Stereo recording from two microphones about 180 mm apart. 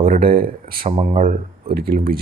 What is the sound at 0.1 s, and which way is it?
Speech, 55° right (ahead or behind).